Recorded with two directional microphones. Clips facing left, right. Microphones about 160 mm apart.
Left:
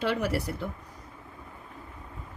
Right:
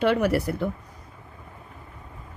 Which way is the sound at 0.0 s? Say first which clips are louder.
Right 7 dB; 60° right (ahead or behind).